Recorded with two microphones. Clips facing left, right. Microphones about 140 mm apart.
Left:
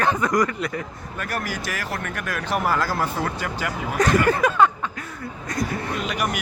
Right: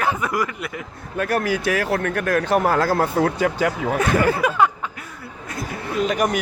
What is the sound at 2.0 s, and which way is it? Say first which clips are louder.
Speech: right 8 dB; 55° right (ahead or behind).